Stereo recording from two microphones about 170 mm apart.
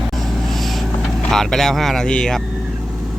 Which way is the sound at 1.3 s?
Centre (ahead or behind).